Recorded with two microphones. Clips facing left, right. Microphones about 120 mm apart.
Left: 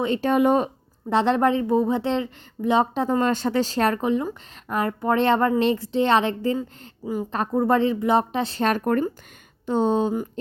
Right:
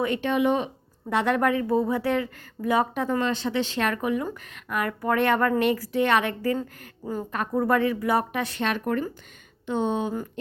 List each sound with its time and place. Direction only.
0.0 s speech: 35° left (ahead or behind)
1.1 s a woman's voice: 30° left (ahead or behind)
3.2 s a woman's voice: 45° left (ahead or behind); by 6.6 s 25° left (ahead or behind)
6.6 s speech: 10° left (ahead or behind)
7.3 s a woman's voice: 30° left (ahead or behind)